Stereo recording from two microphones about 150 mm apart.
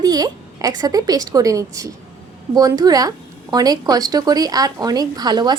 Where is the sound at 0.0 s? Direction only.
25° right (ahead or behind).